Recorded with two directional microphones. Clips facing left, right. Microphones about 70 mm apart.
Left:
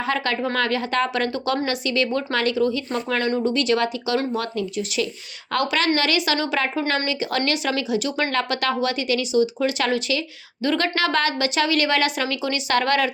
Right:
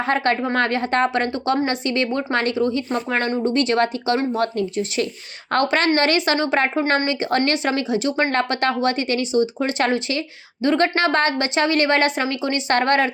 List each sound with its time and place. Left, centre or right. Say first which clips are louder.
0.0 s a woman's voice: right 3 dB; right
5.5 s a woman's voice: right 3 dB; right